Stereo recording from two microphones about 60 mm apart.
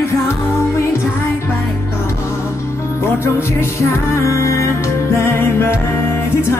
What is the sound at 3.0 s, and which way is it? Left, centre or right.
Music, left.